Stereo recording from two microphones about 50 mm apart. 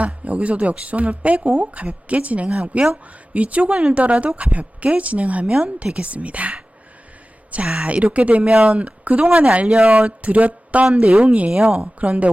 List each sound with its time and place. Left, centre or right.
0.0 s speech: right
10.2 s speech: right
10.8 s speech: centre